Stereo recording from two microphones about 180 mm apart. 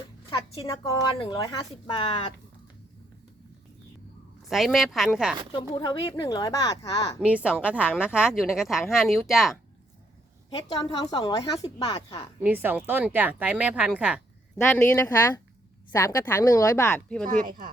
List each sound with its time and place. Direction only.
1.2 s speech: 25° left (ahead or behind)
4.4 s speech: centre (ahead or behind)
5.5 s speech: 25° left (ahead or behind)
7.2 s speech: 5° right (ahead or behind)
10.5 s speech: 25° left (ahead or behind)
12.4 s speech: 10° right (ahead or behind)
14.7 s speech: 10° left (ahead or behind)
17.2 s speech: 50° right (ahead or behind)